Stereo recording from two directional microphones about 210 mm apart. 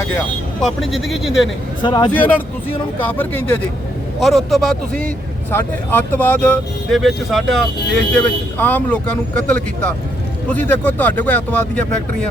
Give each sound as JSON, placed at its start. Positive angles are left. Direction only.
{"t": 0.6, "sound": "speech", "side_deg": 0}
{"t": 1.8, "sound": "speech", "side_deg": 20}
{"t": 2.1, "sound": "speech", "side_deg": 5}